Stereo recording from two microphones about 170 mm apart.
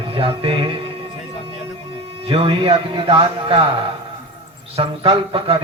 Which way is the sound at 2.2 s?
30° right (ahead or behind).